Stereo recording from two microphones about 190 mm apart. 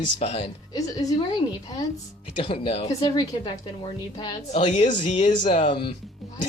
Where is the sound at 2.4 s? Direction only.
30° left (ahead or behind).